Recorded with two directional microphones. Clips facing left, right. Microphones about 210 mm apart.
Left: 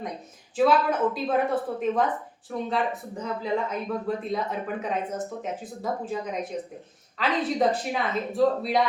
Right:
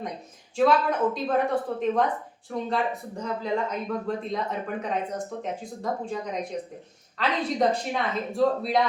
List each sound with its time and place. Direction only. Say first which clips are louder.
0.5 s speech: even; 5° left (ahead or behind)